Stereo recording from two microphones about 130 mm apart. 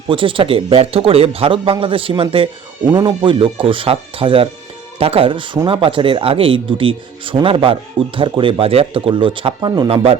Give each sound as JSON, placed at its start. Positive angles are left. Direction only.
{"t": 0.1, "sound": "speech", "side_deg": -40}